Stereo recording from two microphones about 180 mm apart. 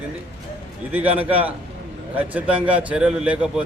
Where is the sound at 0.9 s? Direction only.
10° right (ahead or behind).